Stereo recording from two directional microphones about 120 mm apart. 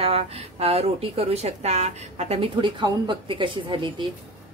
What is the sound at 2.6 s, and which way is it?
Speech, 40° right (ahead or behind).